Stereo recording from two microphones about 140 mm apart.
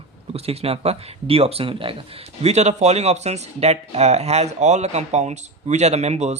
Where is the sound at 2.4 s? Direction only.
50° right (ahead or behind).